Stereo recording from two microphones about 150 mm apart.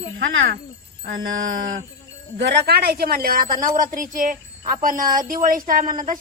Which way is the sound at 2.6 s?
90° right.